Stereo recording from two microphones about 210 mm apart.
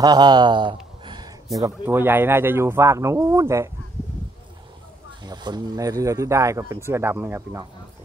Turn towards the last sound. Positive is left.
turn(degrees=-10)  # may be behind; listen again after turning